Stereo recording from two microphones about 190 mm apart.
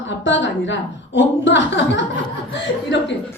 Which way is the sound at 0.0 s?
75° left (ahead or behind).